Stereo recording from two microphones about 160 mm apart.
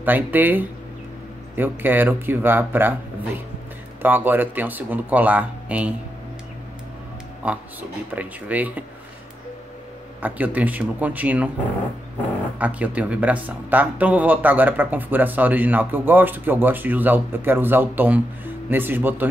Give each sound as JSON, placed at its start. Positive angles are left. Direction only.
{"t": 0.0, "sound": "speech", "side_deg": -10}
{"t": 4.0, "sound": "speech", "side_deg": -10}
{"t": 7.4, "sound": "speech", "side_deg": -10}
{"t": 10.2, "sound": "speech", "side_deg": -10}
{"t": 12.5, "sound": "speech", "side_deg": -10}